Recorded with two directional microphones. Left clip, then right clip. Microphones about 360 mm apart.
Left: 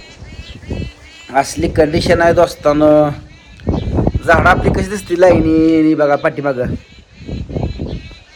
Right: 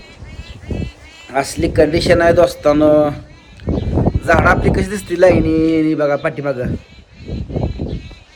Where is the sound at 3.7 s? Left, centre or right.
Centre.